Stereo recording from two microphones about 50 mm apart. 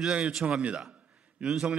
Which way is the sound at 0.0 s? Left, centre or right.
Right.